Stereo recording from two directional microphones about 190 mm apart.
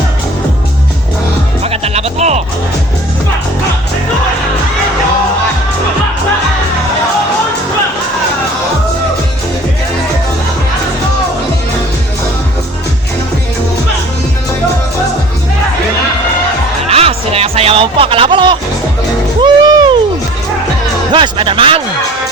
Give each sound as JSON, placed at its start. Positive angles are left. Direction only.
{"t": 1.6, "sound": "music", "side_deg": -35}
{"t": 16.9, "sound": "music", "side_deg": -30}
{"t": 21.1, "sound": "music", "side_deg": -25}